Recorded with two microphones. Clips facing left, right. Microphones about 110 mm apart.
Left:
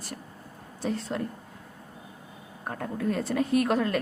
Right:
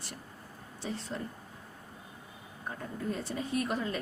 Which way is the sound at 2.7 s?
60° left (ahead or behind).